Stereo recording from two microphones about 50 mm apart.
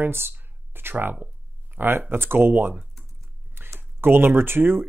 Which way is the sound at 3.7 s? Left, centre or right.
Right.